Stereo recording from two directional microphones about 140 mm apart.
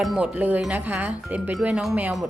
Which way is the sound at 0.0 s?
5° right (ahead or behind).